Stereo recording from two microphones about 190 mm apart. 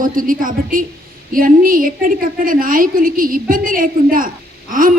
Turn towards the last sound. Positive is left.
turn(degrees=-45)  # may be behind; listen again after turning